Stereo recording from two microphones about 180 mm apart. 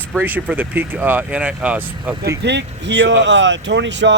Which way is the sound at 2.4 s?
75° right (ahead or behind).